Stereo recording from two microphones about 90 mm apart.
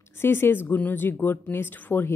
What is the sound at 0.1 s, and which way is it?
A woman's voice, 25° left (ahead or behind).